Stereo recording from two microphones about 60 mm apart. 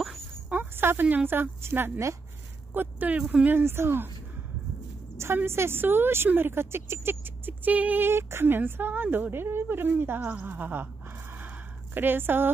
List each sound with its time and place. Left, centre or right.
0.5 s a sound: right
1.0 s a woman's voice: right
2.7 s a woman's voice: right
5.1 s a woman's voice: right
8.1 s a woman's voice: right
11.3 s a sound: right